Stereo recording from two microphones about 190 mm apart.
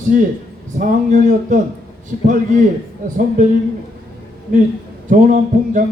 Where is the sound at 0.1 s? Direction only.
45° right (ahead or behind).